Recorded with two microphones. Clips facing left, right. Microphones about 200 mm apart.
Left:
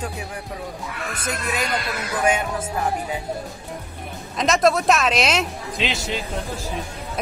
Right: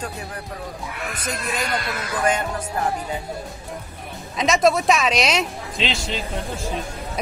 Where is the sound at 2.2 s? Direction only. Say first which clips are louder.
Left 1 dB; 5° left (ahead or behind).